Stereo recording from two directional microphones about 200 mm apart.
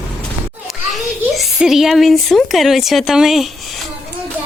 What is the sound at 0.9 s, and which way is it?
A child's voice, centre (ahead or behind).